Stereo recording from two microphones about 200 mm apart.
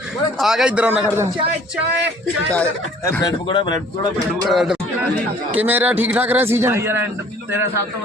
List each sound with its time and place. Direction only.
0.3 s a man's voice: centre (ahead or behind)
2.6 s speech: 15° left (ahead or behind)
4.4 s a man's voice: centre (ahead or behind)